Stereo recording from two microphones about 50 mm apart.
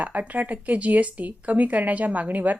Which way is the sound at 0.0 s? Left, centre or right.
Right.